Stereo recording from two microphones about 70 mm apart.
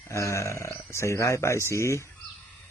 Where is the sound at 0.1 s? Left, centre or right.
Left.